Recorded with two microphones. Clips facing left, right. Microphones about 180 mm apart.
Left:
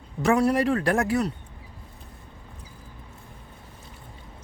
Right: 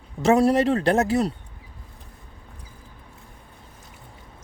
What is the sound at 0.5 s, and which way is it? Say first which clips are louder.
Speech: right 3 dB; 25° right (ahead or behind).